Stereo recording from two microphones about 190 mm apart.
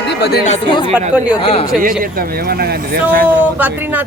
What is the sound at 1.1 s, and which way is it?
Speech, 5° right (ahead or behind).